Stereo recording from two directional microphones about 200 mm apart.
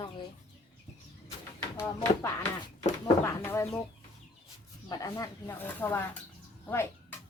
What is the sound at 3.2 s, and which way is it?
Speech, 10° left (ahead or behind).